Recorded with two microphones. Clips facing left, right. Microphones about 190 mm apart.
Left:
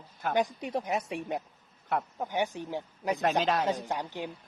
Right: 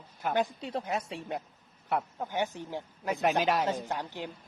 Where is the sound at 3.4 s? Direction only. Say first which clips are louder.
Even; 10° right (ahead or behind).